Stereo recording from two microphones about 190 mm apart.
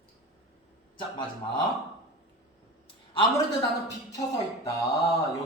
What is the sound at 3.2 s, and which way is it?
Speech, 25° left (ahead or behind).